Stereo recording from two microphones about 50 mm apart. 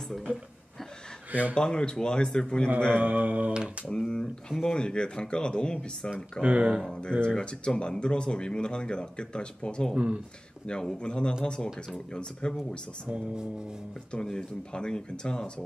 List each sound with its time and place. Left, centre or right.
1.5 s speech: centre
3.0 s mantra: right
3.8 s speech: centre
6.4 s speech: right
7.0 s speech: centre
9.9 s speech: right
10.7 s speech: centre
14.1 s speech: centre